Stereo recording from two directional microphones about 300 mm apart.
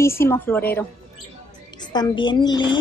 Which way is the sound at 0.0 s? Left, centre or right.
Centre.